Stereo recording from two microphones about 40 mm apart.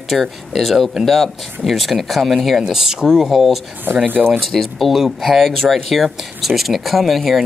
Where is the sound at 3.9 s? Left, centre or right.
Right.